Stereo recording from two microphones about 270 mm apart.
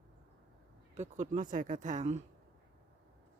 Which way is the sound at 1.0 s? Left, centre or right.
Right.